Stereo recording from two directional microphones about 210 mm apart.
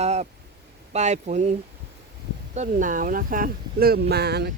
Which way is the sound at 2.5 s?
35° right (ahead or behind).